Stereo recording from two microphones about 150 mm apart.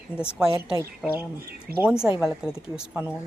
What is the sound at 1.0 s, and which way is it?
Speech, 10° right (ahead or behind).